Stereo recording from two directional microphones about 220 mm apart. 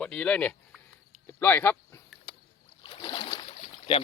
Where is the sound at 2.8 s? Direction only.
20° left (ahead or behind).